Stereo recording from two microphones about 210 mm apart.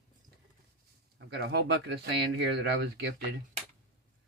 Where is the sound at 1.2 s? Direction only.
50° right (ahead or behind).